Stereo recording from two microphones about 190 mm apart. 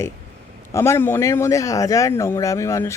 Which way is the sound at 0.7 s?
15° left (ahead or behind).